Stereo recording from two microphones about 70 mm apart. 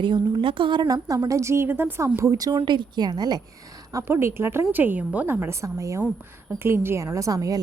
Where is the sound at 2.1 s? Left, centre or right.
Right.